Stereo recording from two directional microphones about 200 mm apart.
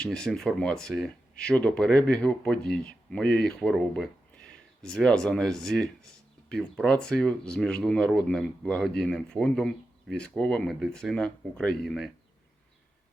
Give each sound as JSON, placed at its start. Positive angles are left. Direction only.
{"t": 0.0, "sound": "speech", "side_deg": 5}